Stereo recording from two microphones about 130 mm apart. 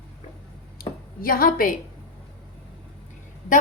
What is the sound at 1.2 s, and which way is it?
Speech, 90° left.